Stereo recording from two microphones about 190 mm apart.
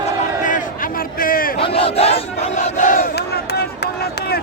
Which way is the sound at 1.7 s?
30° left (ahead or behind).